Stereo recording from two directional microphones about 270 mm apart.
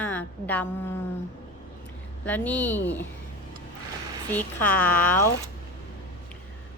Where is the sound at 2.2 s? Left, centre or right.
Centre.